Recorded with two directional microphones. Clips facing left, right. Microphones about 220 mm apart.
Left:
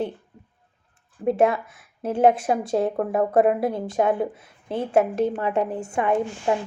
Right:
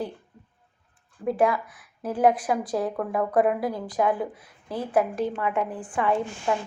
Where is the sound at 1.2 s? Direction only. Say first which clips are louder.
Left 3 dB; 25° left (ahead or behind).